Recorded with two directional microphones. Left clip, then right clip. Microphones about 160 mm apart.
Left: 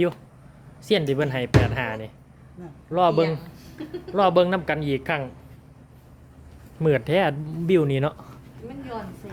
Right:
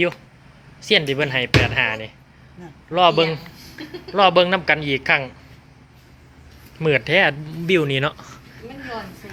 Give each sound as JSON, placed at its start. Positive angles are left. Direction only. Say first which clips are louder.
{"t": 0.8, "sound": "speech", "louder": "right 4 dB", "side_deg": 15}
{"t": 6.7, "sound": "speech", "louder": "right 4 dB", "side_deg": 15}